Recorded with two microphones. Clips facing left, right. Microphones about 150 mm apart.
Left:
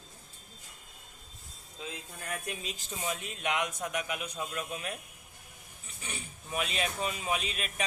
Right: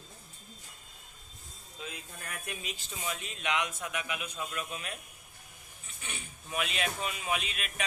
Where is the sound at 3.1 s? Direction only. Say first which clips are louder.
Even; 40° left (ahead or behind).